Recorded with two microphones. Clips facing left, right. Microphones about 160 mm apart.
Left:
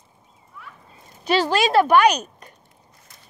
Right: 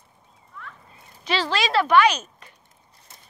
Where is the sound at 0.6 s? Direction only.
5° left (ahead or behind).